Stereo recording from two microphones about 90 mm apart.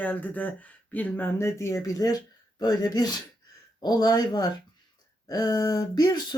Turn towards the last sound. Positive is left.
turn(degrees=50)  # may be behind; listen again after turning